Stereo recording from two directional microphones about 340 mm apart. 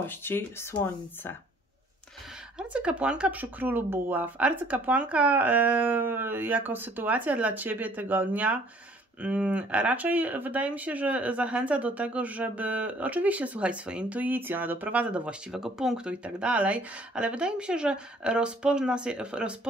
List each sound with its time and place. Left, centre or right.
0.0 s speech: centre
2.7 s speech: centre